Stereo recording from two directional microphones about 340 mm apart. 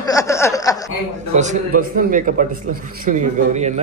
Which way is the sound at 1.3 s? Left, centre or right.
Centre.